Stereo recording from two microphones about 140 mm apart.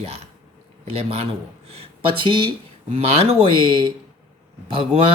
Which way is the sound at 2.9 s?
50° right (ahead or behind).